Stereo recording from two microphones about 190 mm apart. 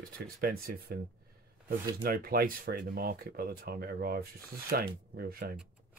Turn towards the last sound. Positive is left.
turn(degrees=-50)  # may be behind; listen again after turning